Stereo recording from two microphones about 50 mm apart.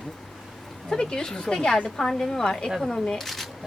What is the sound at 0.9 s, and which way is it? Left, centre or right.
Speech, centre.